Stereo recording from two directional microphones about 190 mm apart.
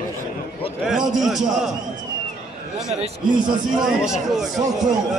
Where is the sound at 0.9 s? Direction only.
Centre (ahead or behind).